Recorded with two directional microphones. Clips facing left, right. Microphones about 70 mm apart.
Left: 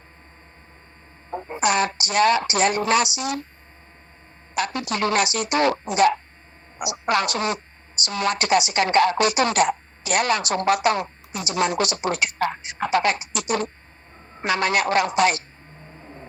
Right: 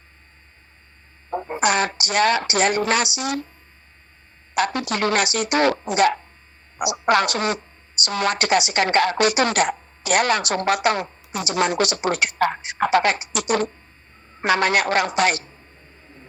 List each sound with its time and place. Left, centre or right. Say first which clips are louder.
1.4 s a woman's voice: right 1 dB; right
4.5 s a woman's voice: right 3 dB; right